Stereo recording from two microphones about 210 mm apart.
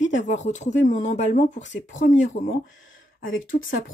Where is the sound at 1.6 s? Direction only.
60° left (ahead or behind).